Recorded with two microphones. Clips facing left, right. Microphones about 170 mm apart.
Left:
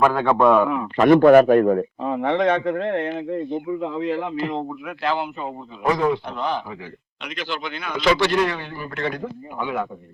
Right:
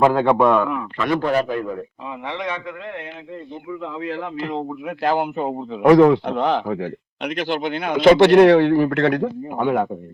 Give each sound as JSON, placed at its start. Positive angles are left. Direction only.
{"t": 0.0, "sound": "a man's voice", "side_deg": -20}
{"t": 0.3, "sound": "a man's voice", "side_deg": 0}
{"t": 0.9, "sound": "a man's voice", "side_deg": 50}
{"t": 4.4, "sound": "a man's voice", "side_deg": 0}
{"t": 5.0, "sound": "speech", "side_deg": -50}
{"t": 7.3, "sound": "speech", "side_deg": -55}